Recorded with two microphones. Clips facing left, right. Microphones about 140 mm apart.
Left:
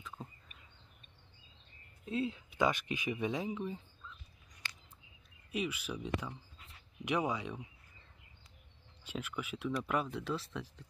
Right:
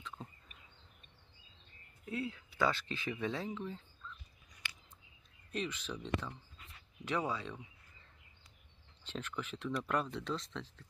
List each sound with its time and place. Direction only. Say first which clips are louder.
0.2 s a sound: left 1 dB; centre (ahead or behind)
2.0 s speech: left 4 dB; 20° left (ahead or behind)
5.5 s speech: left 2 dB; 10° left (ahead or behind)
9.0 s speech: left 1 dB; 10° left (ahead or behind)